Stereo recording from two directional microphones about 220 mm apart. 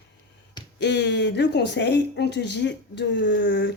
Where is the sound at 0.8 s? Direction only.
50° left (ahead or behind).